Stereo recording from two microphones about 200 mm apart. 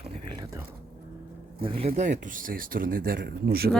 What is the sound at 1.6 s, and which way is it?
Speech, 30° right (ahead or behind).